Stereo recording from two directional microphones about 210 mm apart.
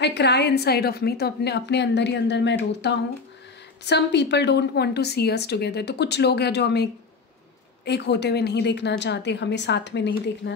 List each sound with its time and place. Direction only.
0.0 s a woman's voice: 55° left (ahead or behind)